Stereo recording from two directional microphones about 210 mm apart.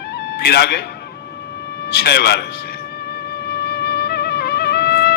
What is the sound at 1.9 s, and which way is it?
Speech, 50° left (ahead or behind).